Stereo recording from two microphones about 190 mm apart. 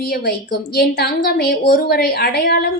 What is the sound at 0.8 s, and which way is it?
A woman's voice, 55° left (ahead or behind).